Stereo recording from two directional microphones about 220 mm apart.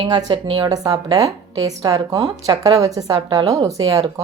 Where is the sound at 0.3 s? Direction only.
20° right (ahead or behind).